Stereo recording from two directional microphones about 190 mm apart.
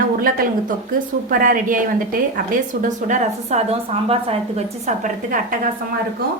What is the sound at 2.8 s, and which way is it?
A woman's voice, 40° right (ahead or behind).